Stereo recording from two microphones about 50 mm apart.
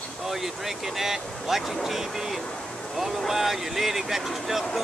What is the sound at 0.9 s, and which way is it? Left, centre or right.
Speech, centre.